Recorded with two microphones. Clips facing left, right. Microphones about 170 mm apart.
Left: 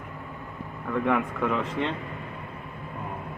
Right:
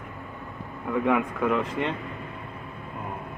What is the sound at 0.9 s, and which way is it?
Speech, 10° right (ahead or behind).